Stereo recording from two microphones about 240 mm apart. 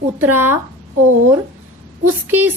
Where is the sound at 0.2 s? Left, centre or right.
Centre.